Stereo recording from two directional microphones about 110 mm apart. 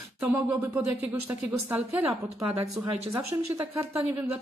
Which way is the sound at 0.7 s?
15° right (ahead or behind).